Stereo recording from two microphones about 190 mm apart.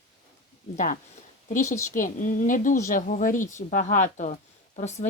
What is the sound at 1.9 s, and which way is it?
A woman's voice, 45° left (ahead or behind).